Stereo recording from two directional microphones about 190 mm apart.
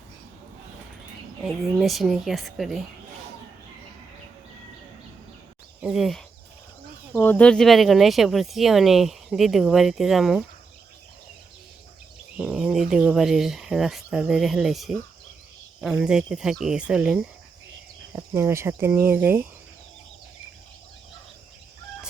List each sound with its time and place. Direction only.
1.8 s speech: centre (ahead or behind)
5.8 s speech: 5° right (ahead or behind)
7.1 s speech: 10° left (ahead or behind)
12.4 s speech: 5° right (ahead or behind)